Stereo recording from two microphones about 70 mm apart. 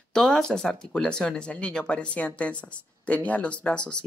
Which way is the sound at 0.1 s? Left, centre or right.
Centre.